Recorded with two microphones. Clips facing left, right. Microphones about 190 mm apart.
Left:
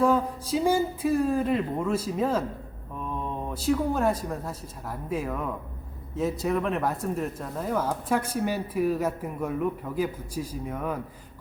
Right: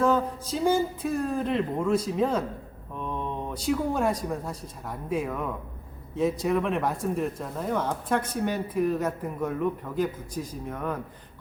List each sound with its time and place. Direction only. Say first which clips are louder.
0.0 s speech: left 1 dB; 10° left (ahead or behind)